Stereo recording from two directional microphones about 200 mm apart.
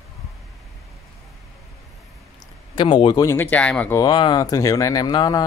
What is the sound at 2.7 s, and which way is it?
Speech, 25° left (ahead or behind).